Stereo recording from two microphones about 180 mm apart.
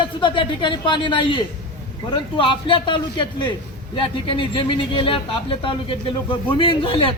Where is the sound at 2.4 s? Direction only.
30° left (ahead or behind).